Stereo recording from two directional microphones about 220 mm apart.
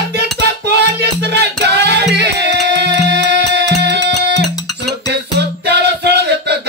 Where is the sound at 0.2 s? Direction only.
50° right (ahead or behind).